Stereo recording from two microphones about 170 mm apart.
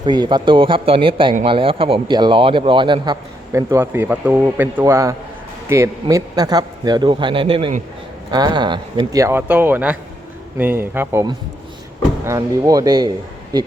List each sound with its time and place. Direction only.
0.0 s a man's voice: 25° right (ahead or behind)